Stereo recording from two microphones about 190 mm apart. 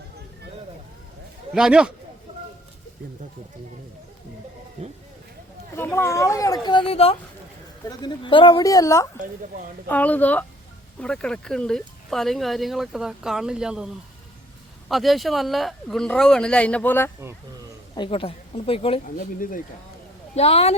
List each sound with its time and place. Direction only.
1.5 s speech: 5° right (ahead or behind)
4.8 s a sound: 35° right (ahead or behind)
5.7 s speech: 10° left (ahead or behind)
17.9 s speech: 25° left (ahead or behind)
19.0 s speech: 45° left (ahead or behind)
20.3 s speech: 30° left (ahead or behind)